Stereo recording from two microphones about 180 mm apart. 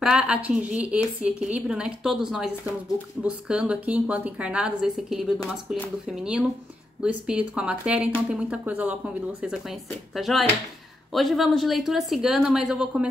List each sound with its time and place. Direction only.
0.0 s a woman's voice: 5° right (ahead or behind)